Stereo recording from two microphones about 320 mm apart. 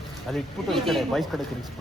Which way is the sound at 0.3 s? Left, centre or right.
Centre.